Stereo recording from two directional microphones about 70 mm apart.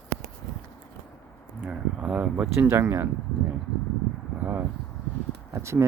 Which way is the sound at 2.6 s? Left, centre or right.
Right.